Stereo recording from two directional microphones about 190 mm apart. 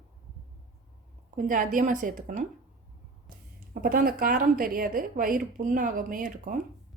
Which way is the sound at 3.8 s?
50° right (ahead or behind).